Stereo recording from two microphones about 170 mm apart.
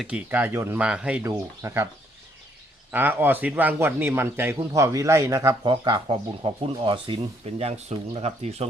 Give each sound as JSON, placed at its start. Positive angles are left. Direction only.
{"t": 0.0, "sound": "a man's voice", "side_deg": -10}
{"t": 2.9, "sound": "a man's voice", "side_deg": -10}
{"t": 7.9, "sound": "speech", "side_deg": -40}